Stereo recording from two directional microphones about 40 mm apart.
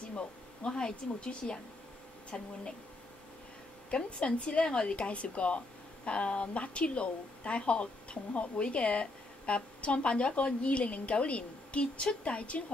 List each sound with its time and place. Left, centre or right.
0.0 s a sound: left
0.7 s speech: left
3.9 s speech: left